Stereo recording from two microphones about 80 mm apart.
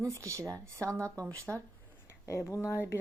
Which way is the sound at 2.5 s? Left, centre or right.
Left.